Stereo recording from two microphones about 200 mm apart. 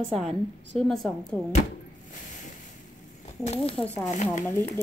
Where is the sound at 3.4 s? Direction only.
30° left (ahead or behind).